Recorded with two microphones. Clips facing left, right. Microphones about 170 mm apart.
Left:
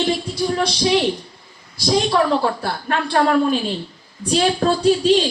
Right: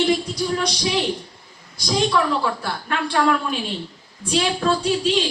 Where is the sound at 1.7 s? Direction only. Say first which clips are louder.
Left 3 dB; 30° left (ahead or behind).